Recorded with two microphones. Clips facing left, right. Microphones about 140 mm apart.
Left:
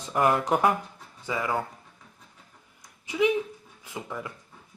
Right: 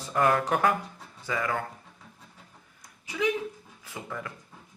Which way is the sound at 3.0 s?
15° left (ahead or behind).